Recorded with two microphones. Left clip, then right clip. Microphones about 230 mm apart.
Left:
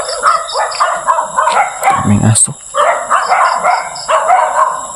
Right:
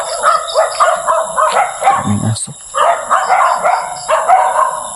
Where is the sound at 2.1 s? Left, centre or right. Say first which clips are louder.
Left 5 dB; centre.